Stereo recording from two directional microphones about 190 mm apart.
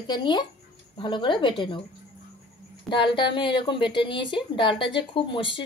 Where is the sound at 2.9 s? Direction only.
25° left (ahead or behind).